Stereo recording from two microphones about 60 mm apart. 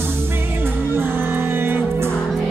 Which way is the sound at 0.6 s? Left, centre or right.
Right.